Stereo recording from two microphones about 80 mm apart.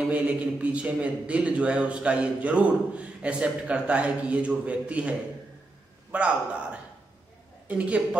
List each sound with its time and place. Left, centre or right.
0.0 s speech: centre
6.1 s speech: centre